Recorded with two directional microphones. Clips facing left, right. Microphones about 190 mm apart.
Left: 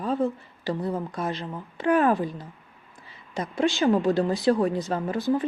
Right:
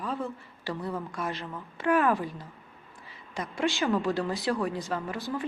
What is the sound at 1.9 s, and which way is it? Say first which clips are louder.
Speech: left 4 dB; 35° left (ahead or behind).